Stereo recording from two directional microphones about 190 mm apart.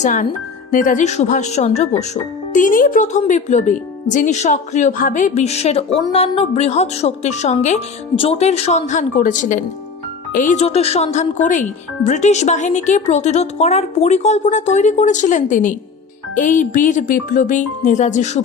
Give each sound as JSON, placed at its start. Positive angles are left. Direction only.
{"t": 0.0, "sound": "speech", "side_deg": 40}